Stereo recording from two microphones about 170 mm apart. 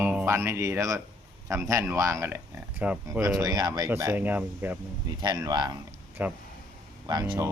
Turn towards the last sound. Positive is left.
turn(degrees=-25)  # may be behind; listen again after turning